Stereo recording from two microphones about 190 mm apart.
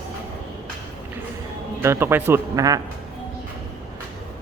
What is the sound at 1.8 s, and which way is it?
A man's voice, 10° right (ahead or behind).